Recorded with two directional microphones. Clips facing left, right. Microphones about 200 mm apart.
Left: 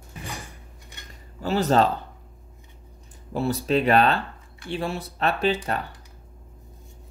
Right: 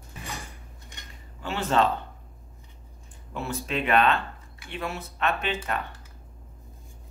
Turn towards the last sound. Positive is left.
turn(degrees=35)  # may be behind; listen again after turning